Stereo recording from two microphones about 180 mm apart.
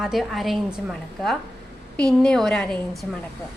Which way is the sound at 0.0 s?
Centre (ahead or behind).